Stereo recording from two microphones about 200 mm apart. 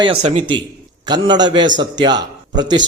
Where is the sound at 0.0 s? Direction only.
30° right (ahead or behind).